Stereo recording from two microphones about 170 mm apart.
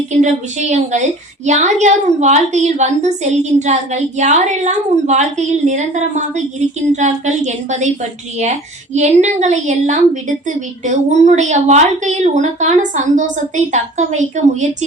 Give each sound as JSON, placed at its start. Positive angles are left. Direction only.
{"t": 0.2, "sound": "a woman's voice", "side_deg": -45}